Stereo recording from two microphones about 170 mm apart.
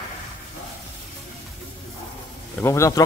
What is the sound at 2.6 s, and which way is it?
Speech, 15° left (ahead or behind).